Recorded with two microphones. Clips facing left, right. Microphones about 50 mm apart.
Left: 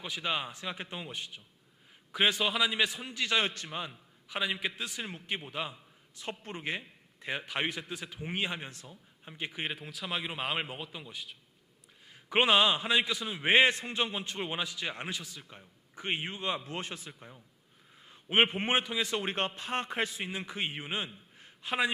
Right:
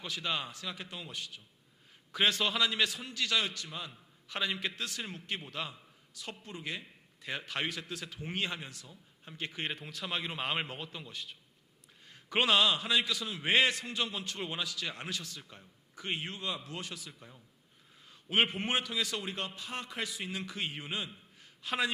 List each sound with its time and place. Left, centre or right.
0.0 s a man's voice: centre
2.1 s a man's voice: centre; by 3.8 s left
3.8 s a man's voice: centre
6.1 s speech: left
7.3 s a man's voice: centre
8.6 s a man's voice: left
9.2 s a man's voice: centre
12.3 s a man's voice: left
15.2 s a man's voice: centre
16.0 s a man's voice: left
16.5 s a man's voice: left
19.2 s a man's voice: left